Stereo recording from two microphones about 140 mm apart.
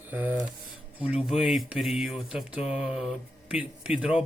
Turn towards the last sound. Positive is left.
turn(degrees=-5)  # may be behind; listen again after turning